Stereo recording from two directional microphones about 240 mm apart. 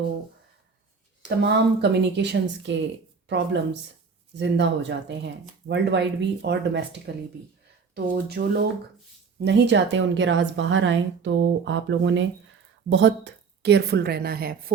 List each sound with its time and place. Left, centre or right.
1.4 s a woman's voice: right